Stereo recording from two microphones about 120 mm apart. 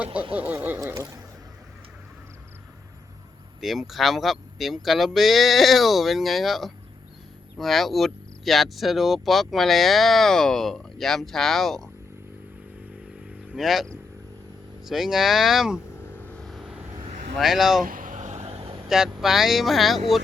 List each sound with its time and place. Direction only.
0.1 s speech: 45° right (ahead or behind)
0.3 s a sound: 15° right (ahead or behind)
3.6 s speech: centre (ahead or behind)
13.2 s vehicle: 5° right (ahead or behind)
14.8 s speech: 5° right (ahead or behind)
16.0 s vehicle: 20° left (ahead or behind)
16.5 s vehicle: centre (ahead or behind)
17.3 s speech: centre (ahead or behind)
18.0 s a sound: 90° right; by 18.7 s 65° right (ahead or behind)
18.9 s speech: 5° right (ahead or behind)